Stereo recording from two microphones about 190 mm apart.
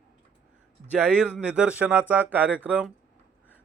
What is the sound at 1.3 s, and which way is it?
A man's voice, 5° right (ahead or behind).